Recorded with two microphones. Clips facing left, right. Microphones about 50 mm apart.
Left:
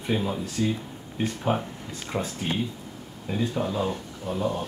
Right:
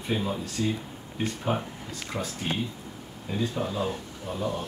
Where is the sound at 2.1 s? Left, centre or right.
Left.